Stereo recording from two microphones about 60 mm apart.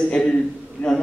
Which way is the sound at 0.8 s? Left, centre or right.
Left.